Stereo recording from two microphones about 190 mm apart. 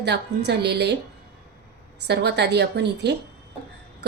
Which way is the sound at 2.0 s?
60° right (ahead or behind).